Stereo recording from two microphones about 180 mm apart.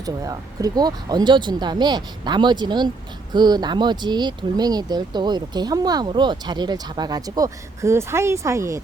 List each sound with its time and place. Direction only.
0.0 s speech: 20° right (ahead or behind)